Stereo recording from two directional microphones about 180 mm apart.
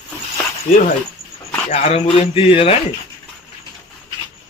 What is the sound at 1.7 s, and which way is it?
Speech, 35° left (ahead or behind).